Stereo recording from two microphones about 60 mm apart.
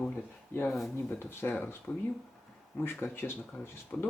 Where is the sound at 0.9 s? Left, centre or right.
Left.